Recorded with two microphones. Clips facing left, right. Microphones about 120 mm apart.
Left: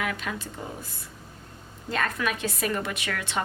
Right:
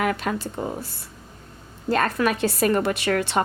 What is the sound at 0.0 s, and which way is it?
Speech, 45° right (ahead or behind).